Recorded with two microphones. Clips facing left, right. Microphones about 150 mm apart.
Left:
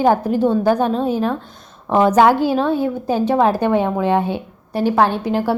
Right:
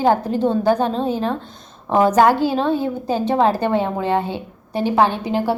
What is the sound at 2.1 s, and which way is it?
A woman's voice, 10° left (ahead or behind).